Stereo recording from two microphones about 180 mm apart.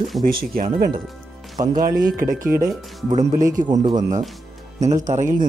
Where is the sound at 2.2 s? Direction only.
50° right (ahead or behind).